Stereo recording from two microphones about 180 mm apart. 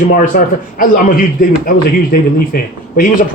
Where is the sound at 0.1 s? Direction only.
50° left (ahead or behind).